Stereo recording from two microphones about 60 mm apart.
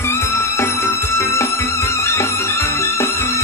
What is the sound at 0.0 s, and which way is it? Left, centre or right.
Music, left.